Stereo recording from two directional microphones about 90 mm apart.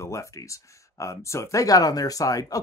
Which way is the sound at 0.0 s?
35° left (ahead or behind).